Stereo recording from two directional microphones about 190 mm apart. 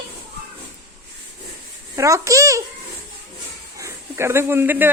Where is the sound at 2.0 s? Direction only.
15° right (ahead or behind).